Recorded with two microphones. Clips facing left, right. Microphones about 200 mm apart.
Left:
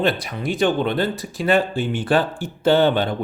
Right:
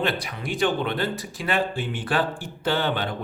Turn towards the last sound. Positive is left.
turn(degrees=25)  # may be behind; listen again after turning